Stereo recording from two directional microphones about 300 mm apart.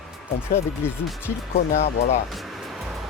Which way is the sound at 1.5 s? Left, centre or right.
Left.